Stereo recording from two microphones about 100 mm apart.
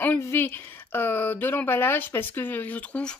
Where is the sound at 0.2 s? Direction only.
25° left (ahead or behind).